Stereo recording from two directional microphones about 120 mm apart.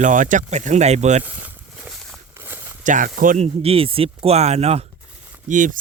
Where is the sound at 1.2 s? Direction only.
15° right (ahead or behind).